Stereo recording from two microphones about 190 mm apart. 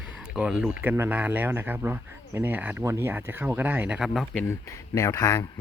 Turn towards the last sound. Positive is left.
turn(degrees=15)  # may be behind; listen again after turning